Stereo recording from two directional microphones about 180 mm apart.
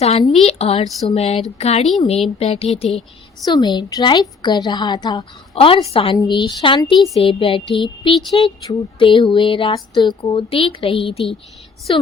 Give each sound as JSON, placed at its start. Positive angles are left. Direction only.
{"t": 0.0, "sound": "a woman's voice", "side_deg": 35}
{"t": 0.9, "sound": "a sound", "side_deg": 0}
{"t": 1.1, "sound": "a woman's voice", "side_deg": 35}
{"t": 3.4, "sound": "a woman's voice", "side_deg": 25}